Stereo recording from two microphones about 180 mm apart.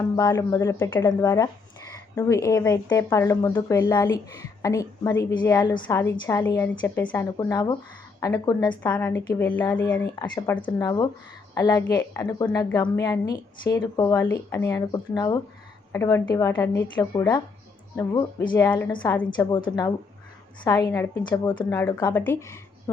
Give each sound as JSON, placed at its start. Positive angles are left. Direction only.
{"t": 0.2, "sound": "a woman's voice", "side_deg": 15}
{"t": 7.5, "sound": "a woman's voice", "side_deg": 25}
{"t": 8.8, "sound": "a woman's voice", "side_deg": 10}
{"t": 9.7, "sound": "a woman's voice", "side_deg": 10}